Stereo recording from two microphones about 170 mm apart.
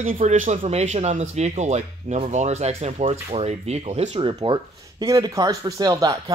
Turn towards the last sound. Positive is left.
turn(degrees=-20)  # may be behind; listen again after turning